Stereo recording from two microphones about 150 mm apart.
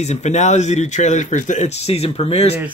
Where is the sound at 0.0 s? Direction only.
50° left (ahead or behind).